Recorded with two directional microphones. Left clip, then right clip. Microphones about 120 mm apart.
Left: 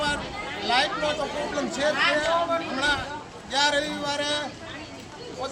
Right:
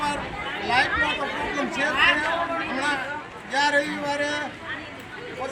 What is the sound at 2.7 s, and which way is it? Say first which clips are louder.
Speech: even; 15° left (ahead or behind).